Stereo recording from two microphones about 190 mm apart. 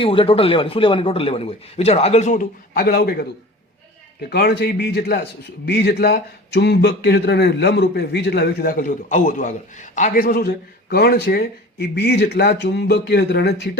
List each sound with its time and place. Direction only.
0.0 s a man's voice: 30° left (ahead or behind); by 3.2 s 55° left (ahead or behind)
4.3 s a man's voice: 60° left (ahead or behind)